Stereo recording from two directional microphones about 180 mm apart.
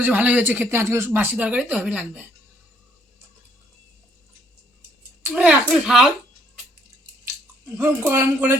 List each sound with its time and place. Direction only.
0.0 s speech: 10° right (ahead or behind)
5.2 s a woman's voice: 10° right (ahead or behind)
7.8 s speech: 15° right (ahead or behind)